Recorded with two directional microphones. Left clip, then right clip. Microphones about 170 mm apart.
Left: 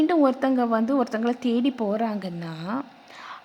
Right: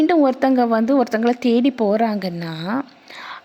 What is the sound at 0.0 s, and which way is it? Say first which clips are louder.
A woman's voice: right 5 dB; 20° right (ahead or behind).